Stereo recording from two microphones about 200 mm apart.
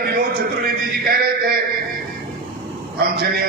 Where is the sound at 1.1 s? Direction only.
50° right (ahead or behind).